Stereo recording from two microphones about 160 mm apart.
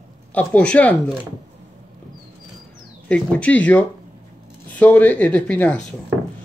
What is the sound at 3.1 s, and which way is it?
Speech, 10° left (ahead or behind).